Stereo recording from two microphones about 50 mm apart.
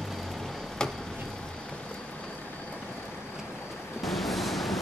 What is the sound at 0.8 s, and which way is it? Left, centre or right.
Chop, centre.